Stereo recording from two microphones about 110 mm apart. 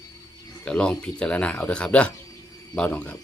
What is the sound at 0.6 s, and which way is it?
Speech, 10° left (ahead or behind).